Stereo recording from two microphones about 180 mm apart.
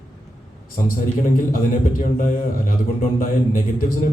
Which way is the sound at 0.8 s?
50° left (ahead or behind).